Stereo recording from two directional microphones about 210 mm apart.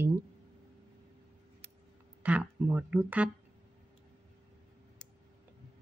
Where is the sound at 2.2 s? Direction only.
5° right (ahead or behind).